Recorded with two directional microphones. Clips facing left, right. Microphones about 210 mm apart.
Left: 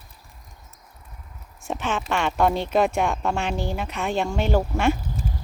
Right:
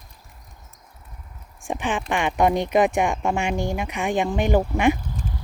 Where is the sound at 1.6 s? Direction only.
15° right (ahead or behind).